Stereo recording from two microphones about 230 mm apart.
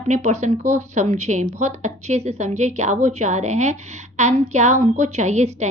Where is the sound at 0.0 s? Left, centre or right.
Right.